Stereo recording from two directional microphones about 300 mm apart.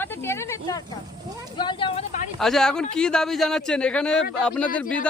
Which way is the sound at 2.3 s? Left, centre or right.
Centre.